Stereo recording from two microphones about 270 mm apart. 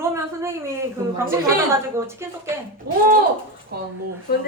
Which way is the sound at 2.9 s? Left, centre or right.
Right.